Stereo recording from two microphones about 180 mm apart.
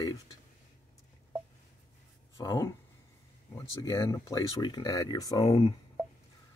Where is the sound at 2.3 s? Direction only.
15° left (ahead or behind).